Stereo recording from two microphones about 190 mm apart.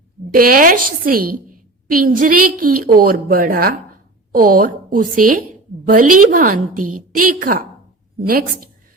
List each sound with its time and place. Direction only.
0.3 s a woman's voice: 50° right (ahead or behind)